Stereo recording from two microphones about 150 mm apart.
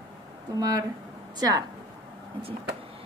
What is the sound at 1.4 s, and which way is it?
Speech, 25° right (ahead or behind).